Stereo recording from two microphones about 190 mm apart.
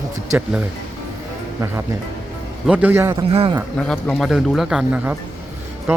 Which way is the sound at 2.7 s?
10° right (ahead or behind).